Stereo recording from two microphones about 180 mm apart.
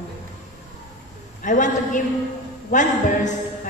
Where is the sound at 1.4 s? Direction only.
45° left (ahead or behind).